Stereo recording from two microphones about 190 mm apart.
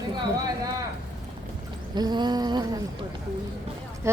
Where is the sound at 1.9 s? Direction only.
20° right (ahead or behind).